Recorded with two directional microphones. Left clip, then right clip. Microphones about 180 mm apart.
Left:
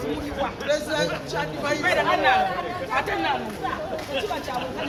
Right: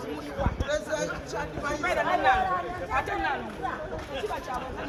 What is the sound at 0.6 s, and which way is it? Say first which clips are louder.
Speech: left 7 dB; 20° right (ahead or behind).